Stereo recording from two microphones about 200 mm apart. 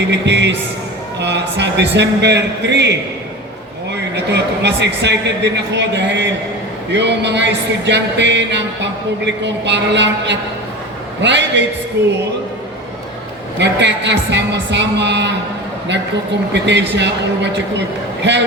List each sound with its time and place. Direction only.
0.0 s music: 60° right (ahead or behind)
4.1 s music: 55° right (ahead or behind)
13.6 s music: 60° right (ahead or behind)
16.5 s music: 60° right (ahead or behind)